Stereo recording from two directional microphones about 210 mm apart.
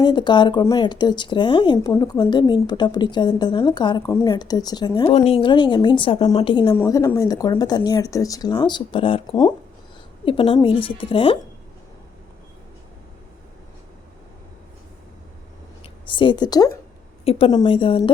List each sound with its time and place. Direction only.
0.0 s speech: 20° left (ahead or behind)
16.0 s speech: 25° left (ahead or behind)